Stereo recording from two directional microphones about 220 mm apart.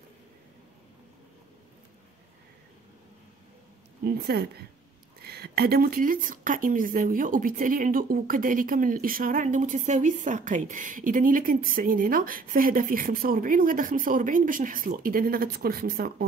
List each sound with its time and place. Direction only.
4.0 s speech: 45° right (ahead or behind)